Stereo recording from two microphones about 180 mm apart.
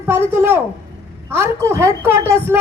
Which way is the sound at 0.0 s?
15° right (ahead or behind).